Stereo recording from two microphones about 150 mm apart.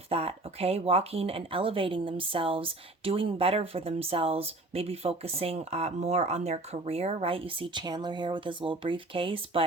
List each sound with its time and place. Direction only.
0.1 s a woman's voice: 40° right (ahead or behind)